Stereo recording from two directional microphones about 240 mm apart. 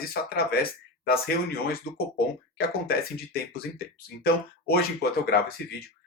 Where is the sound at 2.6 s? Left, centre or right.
Left.